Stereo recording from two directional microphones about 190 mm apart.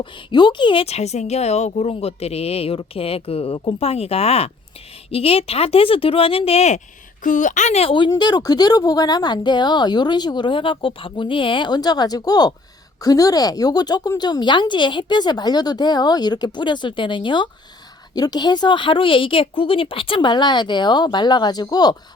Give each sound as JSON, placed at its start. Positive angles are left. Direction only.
{"t": 0.0, "sound": "speech", "side_deg": 25}